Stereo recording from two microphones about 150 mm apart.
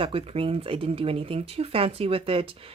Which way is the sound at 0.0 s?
40° right (ahead or behind).